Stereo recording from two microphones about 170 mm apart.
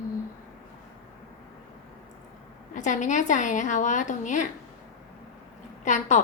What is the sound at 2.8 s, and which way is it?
A woman's voice, 45° left (ahead or behind).